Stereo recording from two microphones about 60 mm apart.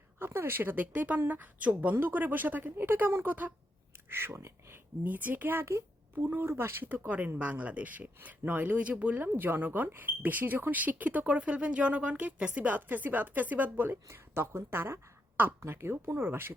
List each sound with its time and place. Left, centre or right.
0.2 s speech: right
3.2 s speech: right
4.1 s speech: right
5.0 s speech: right
7.3 s speech: right
14.1 s a woman's voice: right